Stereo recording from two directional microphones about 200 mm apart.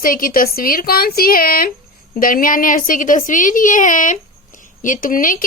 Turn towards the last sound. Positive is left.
turn(degrees=45)  # may be behind; listen again after turning